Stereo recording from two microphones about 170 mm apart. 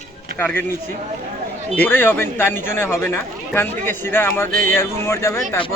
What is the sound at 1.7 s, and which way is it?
A man's voice, 10° left (ahead or behind).